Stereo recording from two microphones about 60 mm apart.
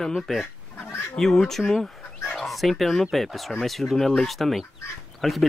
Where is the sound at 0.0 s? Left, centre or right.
Centre.